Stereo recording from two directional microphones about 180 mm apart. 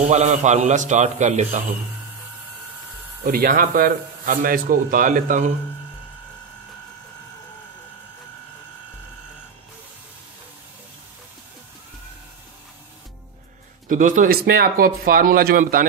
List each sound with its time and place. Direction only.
0.1 s a man's voice: 40° right (ahead or behind)
3.3 s a man's voice: 55° right (ahead or behind)
13.8 s a man's voice: 45° right (ahead or behind)